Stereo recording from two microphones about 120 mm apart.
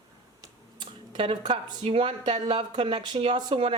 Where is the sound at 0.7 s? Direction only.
40° right (ahead or behind).